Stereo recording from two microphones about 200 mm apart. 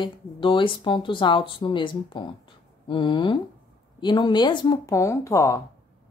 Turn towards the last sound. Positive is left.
turn(degrees=15)  # may be behind; listen again after turning